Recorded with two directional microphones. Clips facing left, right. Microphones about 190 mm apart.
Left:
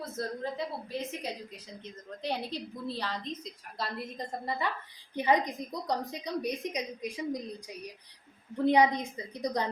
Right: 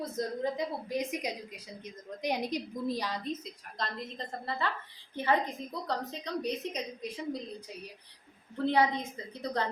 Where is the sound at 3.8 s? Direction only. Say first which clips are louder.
Left 1 dB; 10° left (ahead or behind).